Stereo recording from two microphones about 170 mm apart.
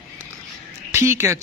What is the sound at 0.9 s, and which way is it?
Speech, 15° right (ahead or behind).